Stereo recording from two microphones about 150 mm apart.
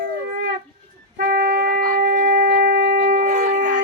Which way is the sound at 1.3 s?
90° right.